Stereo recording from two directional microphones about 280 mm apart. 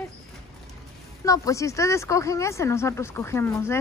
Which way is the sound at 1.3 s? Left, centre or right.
Centre.